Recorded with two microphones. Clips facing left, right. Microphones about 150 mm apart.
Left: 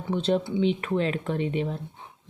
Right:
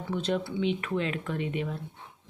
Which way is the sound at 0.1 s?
30° left (ahead or behind).